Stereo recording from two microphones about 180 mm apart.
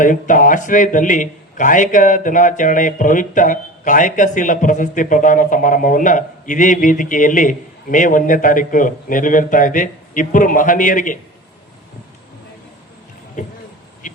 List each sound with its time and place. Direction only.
0.0 s a man's voice: 45° left (ahead or behind)
13.4 s speech: 45° left (ahead or behind)